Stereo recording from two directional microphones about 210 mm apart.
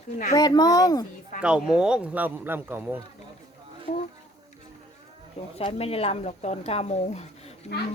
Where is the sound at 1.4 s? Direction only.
5° right (ahead or behind).